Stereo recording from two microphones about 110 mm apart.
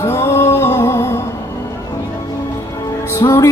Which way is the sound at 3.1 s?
25° left (ahead or behind).